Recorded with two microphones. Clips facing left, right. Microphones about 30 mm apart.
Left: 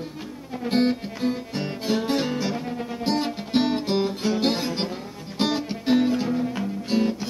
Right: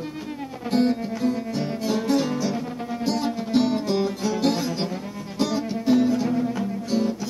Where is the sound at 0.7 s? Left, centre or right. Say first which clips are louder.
Right 1 dB; left.